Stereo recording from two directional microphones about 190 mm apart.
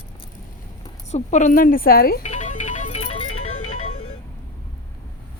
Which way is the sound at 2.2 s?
35° left (ahead or behind).